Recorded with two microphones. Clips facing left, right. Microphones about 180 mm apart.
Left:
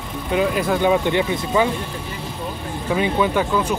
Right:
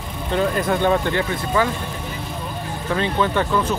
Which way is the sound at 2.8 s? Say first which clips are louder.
Left 2 dB; 10° left (ahead or behind).